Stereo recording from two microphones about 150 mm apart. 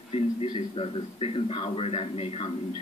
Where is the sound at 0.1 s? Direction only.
40° left (ahead or behind).